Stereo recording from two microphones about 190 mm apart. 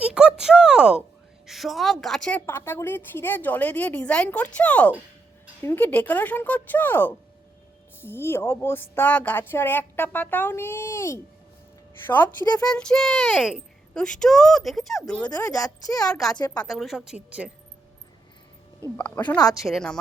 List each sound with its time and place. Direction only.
0.0 s a sound: 5° right (ahead or behind)
1.5 s a woman's voice: centre (ahead or behind); by 12.7 s 20° left (ahead or behind)
12.7 s a child's voice: 5° left (ahead or behind)
15.4 s a woman's voice: 15° left (ahead or behind)
16.6 s a child's voice: centre (ahead or behind)
18.9 s a woman's voice: 10° left (ahead or behind)